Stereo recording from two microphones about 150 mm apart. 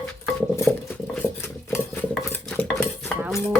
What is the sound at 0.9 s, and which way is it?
Cutlery, 10° left (ahead or behind).